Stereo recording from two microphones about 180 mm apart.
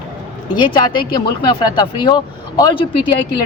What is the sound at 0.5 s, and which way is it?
Speech, 25° left (ahead or behind).